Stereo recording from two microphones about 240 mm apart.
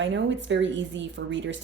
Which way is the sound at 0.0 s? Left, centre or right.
Right.